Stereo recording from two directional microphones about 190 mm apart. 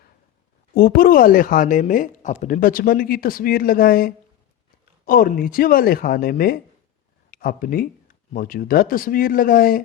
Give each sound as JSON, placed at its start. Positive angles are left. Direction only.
{"t": 0.7, "sound": "speech", "side_deg": 50}